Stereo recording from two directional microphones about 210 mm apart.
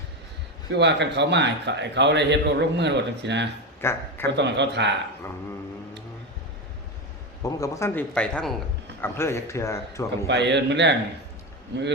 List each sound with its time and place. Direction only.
0.7 s a man's voice: 55° right (ahead or behind)
3.8 s speech: 10° left (ahead or behind)
4.4 s a man's voice: 55° right (ahead or behind)
7.4 s a man's voice: 15° left (ahead or behind)
10.2 s a man's voice: 55° right (ahead or behind)